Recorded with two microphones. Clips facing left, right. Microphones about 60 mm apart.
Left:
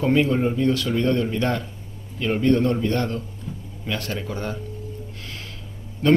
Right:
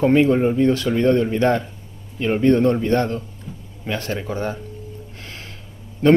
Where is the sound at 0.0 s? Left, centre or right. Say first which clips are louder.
Right 4 dB; right.